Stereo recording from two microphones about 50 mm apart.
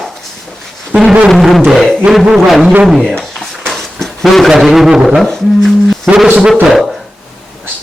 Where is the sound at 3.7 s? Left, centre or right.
Centre.